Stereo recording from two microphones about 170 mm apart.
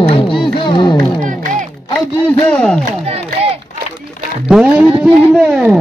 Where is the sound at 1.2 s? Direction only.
50° right (ahead or behind).